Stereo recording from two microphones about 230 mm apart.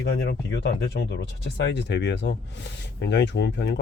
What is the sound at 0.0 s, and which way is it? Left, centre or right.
Speech, left.